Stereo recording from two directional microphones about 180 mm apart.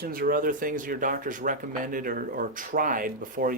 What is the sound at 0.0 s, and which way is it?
Speech, 55° right (ahead or behind).